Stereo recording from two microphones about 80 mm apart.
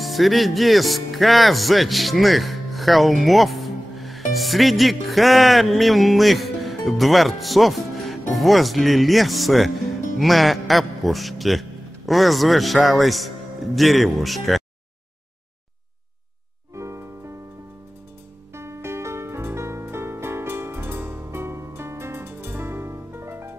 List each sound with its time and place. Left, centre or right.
0.0 s a man's voice: centre
16.7 s music: right
18.5 s music: right